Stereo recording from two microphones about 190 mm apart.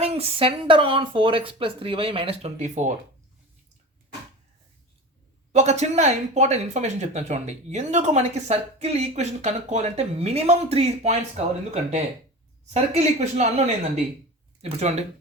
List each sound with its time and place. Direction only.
0.0 s speech: 30° right (ahead or behind)
5.5 s speech: 35° right (ahead or behind)